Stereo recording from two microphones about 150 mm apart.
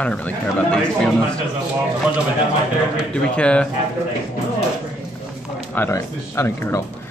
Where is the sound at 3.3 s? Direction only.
5° left (ahead or behind).